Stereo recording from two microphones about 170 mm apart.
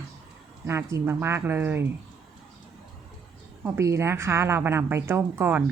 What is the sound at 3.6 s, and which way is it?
A woman's voice, 15° right (ahead or behind).